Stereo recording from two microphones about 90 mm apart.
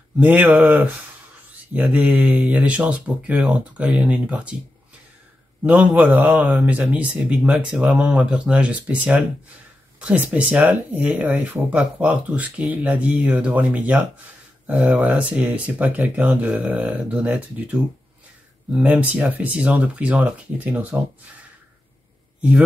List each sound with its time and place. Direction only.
0.2 s speech: 15° right (ahead or behind)
5.7 s speech: 15° right (ahead or behind)